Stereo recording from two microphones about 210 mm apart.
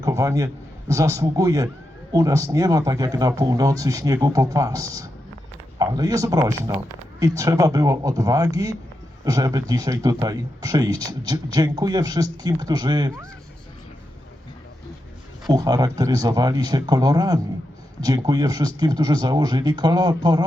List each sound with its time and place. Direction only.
0.0 s a man's voice: 15° right (ahead or behind)
15.4 s speech: 15° right (ahead or behind)